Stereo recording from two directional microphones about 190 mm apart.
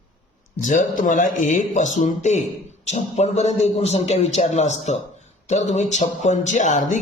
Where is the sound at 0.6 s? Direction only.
40° left (ahead or behind).